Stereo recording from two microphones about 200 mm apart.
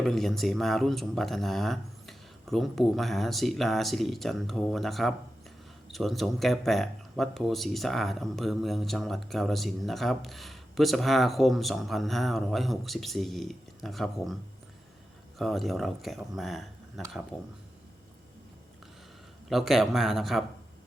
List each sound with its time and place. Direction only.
0.0 s speech: centre (ahead or behind)
15.4 s speech: centre (ahead or behind)
19.5 s speech: centre (ahead or behind)